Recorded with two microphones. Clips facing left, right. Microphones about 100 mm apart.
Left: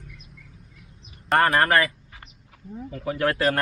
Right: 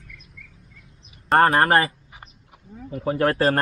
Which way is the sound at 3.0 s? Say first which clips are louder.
Right 3 dB; 35° right (ahead or behind).